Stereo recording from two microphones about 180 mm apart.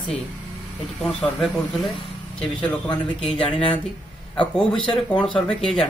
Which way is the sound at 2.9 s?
30° left (ahead or behind).